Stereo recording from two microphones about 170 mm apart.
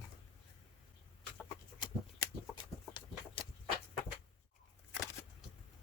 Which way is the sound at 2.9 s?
30° left (ahead or behind).